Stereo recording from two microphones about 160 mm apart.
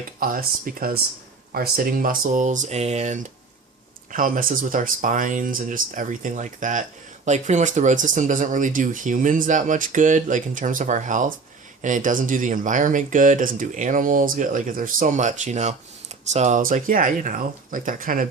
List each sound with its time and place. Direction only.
0.2 s speech: 60° right (ahead or behind); by 3.2 s 45° right (ahead or behind)
4.1 s speech: 60° right (ahead or behind)